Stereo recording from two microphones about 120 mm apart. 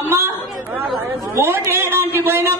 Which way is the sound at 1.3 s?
20° right (ahead or behind).